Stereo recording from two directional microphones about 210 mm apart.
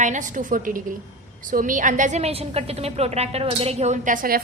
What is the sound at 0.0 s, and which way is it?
A woman's voice, 35° right (ahead or behind).